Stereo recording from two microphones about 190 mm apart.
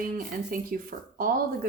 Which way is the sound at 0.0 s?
50° right (ahead or behind).